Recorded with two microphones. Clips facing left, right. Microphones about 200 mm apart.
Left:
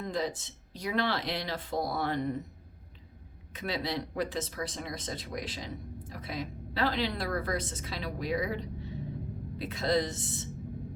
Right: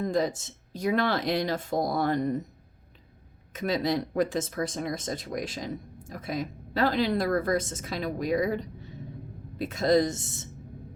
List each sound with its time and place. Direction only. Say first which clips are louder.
0.0 s speech: right 6 dB; 45° right (ahead or behind)
3.5 s speech: right 7 dB; 45° right (ahead or behind)